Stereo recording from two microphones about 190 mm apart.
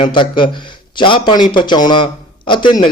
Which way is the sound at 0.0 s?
25° left (ahead or behind).